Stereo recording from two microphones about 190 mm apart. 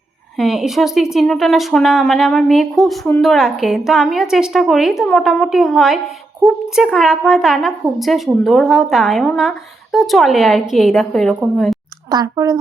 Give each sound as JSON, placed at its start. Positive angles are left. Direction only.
{"t": 0.3, "sound": "speech", "side_deg": 0}
{"t": 12.1, "sound": "speech", "side_deg": -20}